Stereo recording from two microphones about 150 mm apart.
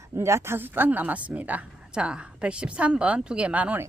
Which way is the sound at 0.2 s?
20° right (ahead or behind).